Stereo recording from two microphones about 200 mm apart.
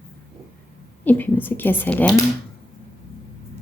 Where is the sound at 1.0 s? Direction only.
10° left (ahead or behind).